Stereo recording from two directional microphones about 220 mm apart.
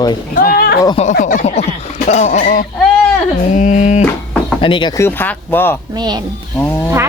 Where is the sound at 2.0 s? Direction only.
30° left (ahead or behind).